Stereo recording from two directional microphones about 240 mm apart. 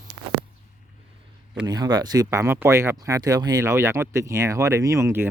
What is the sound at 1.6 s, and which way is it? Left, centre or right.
Speech, centre.